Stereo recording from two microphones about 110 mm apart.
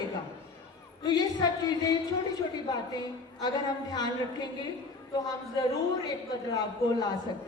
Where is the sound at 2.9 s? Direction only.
40° left (ahead or behind).